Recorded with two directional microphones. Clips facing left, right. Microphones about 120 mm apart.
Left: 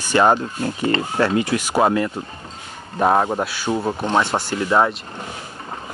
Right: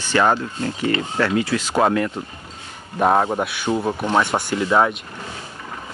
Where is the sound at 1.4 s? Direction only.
15° left (ahead or behind).